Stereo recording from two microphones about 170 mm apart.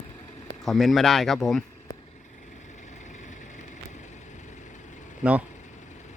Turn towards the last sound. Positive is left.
turn(degrees=-10)  # may be behind; listen again after turning